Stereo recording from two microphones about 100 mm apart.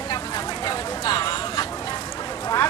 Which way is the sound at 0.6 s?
45° left (ahead or behind).